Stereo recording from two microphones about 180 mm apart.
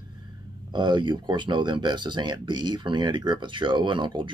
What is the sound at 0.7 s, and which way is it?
Speech, 25° right (ahead or behind).